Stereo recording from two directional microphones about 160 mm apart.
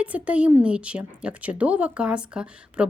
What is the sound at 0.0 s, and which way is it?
A woman's voice, 10° right (ahead or behind).